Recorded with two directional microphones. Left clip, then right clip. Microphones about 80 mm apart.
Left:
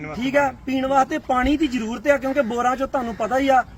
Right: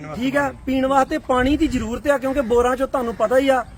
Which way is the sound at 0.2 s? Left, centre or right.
Right.